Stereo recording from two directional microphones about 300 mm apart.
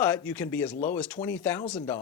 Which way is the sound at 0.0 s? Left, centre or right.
Centre.